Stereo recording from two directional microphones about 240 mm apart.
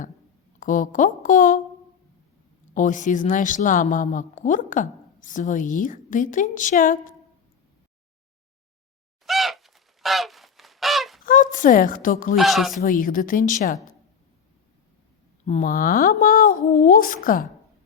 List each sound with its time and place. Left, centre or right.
0.6 s a woman's voice: left
2.7 s a woman's voice: left
9.2 s goose: centre
11.3 s a woman's voice: left
12.4 s speech: centre
12.8 s a woman's voice: left
15.4 s a woman's voice: left